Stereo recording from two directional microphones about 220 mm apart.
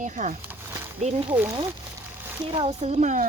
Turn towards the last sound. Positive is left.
turn(degrees=-30)  # may be behind; listen again after turning